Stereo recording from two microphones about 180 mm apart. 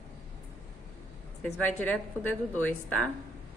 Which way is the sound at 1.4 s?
10° left (ahead or behind).